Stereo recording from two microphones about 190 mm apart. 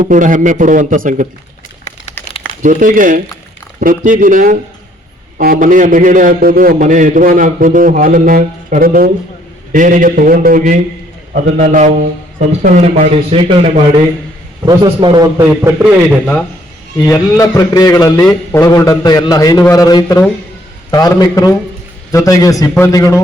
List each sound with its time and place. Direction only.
0.0 s a man's voice: 45° right (ahead or behind)
2.2 s crumpling: 10° left (ahead or behind)
2.6 s a man's voice: 40° right (ahead or behind); by 15.7 s 20° right (ahead or behind)
15.8 s a man's voice: centre (ahead or behind)
17.1 s a man's voice: 20° left (ahead or behind)